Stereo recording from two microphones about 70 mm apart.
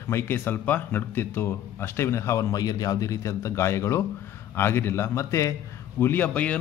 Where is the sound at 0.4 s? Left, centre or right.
Left.